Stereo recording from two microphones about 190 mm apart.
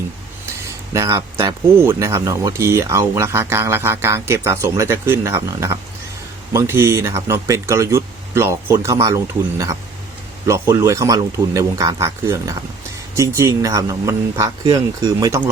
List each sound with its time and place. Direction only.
0.9 s speech: 15° right (ahead or behind)